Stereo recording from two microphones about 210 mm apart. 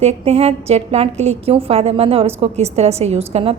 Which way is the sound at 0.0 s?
30° right (ahead or behind).